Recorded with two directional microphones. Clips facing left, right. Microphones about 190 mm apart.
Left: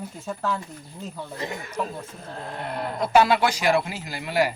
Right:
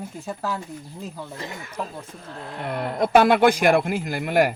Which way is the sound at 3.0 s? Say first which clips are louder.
Right 3 dB; 55° right (ahead or behind).